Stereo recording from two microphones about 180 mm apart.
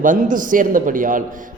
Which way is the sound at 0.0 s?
45° right (ahead or behind).